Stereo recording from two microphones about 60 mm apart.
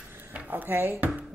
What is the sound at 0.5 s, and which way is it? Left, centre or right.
Speech, right.